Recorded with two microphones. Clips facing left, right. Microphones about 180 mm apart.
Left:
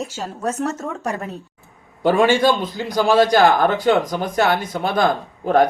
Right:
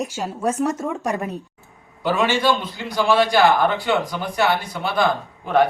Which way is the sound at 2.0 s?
50° left (ahead or behind).